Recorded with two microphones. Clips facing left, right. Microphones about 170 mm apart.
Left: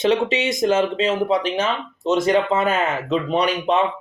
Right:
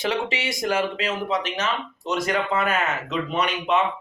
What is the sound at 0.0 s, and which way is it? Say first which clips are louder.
Speech: left 7 dB; 25° left (ahead or behind).